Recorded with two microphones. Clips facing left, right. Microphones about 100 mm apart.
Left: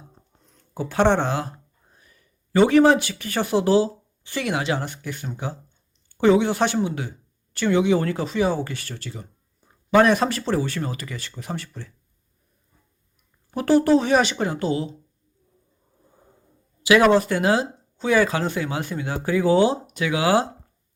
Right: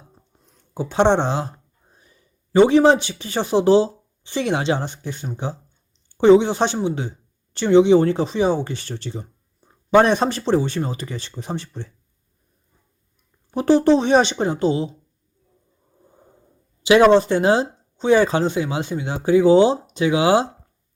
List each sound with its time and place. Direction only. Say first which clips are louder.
0.7 s speech: right 2 dB; 20° right (ahead or behind)
13.5 s speech: right 2 dB; 20° right (ahead or behind)
16.8 s speech: right 3 dB; 25° right (ahead or behind)